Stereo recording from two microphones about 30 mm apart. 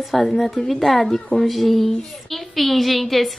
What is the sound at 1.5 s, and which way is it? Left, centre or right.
Speech, centre.